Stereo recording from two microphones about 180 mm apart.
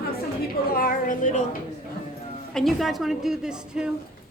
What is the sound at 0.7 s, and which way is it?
Speech, 50° left (ahead or behind).